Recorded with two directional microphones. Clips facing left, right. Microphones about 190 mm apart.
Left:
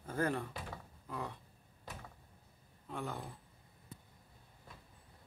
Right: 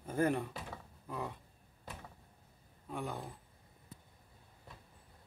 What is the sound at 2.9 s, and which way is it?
Speech, 15° right (ahead or behind).